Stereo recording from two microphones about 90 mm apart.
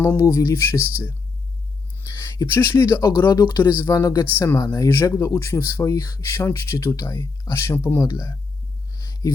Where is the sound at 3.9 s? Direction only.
40° left (ahead or behind).